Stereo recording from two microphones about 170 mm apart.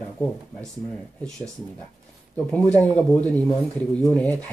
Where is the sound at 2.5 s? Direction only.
10° left (ahead or behind).